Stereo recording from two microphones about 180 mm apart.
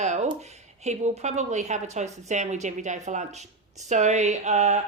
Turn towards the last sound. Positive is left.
turn(degrees=-40)  # may be behind; listen again after turning